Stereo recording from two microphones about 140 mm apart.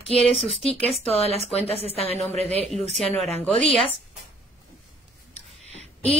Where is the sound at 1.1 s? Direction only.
45° left (ahead or behind).